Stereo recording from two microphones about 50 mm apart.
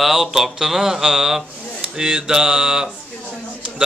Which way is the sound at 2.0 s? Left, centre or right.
Centre.